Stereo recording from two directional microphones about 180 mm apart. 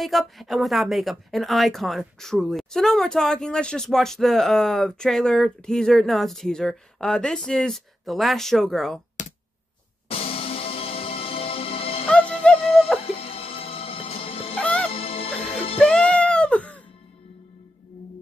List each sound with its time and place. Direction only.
0.0 s speech: centre (ahead or behind)
10.0 s music: 30° left (ahead or behind)
12.1 s music: 5° left (ahead or behind)
13.0 s music: 30° left (ahead or behind)
14.5 s music: 5° left (ahead or behind)
14.9 s music: 30° left (ahead or behind)
15.8 s music: 5° left (ahead or behind)